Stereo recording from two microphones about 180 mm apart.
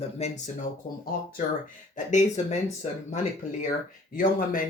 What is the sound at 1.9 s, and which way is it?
Speech, 40° left (ahead or behind).